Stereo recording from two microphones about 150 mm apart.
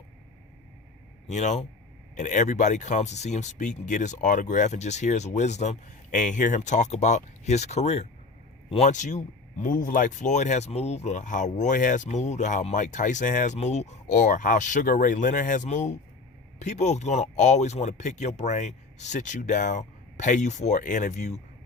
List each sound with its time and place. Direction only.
1.3 s speech: 50° left (ahead or behind)